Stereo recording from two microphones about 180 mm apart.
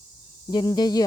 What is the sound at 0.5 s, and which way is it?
Speech, 20° left (ahead or behind).